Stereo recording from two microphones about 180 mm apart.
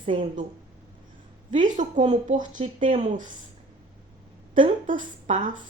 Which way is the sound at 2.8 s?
30° right (ahead or behind).